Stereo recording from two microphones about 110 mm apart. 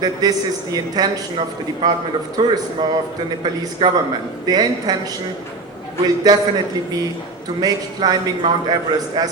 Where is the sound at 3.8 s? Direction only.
40° right (ahead or behind).